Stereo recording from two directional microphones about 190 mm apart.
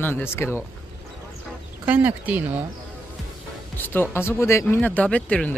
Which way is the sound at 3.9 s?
10° left (ahead or behind).